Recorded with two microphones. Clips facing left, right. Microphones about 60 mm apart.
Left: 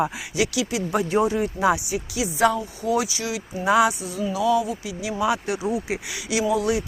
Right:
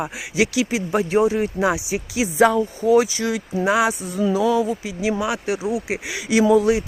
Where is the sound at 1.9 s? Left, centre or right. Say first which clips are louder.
Right 3 dB; right.